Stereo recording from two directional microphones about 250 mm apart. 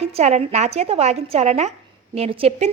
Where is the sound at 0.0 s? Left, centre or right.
Right.